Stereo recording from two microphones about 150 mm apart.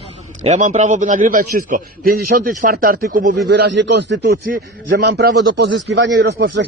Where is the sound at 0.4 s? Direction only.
50° right (ahead or behind).